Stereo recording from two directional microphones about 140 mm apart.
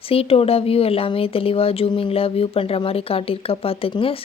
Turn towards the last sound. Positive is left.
turn(degrees=40)  # may be behind; listen again after turning